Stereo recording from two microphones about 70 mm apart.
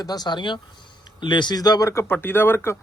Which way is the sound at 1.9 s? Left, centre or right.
Left.